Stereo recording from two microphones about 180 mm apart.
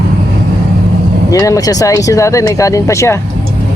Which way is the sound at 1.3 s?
20° left (ahead or behind).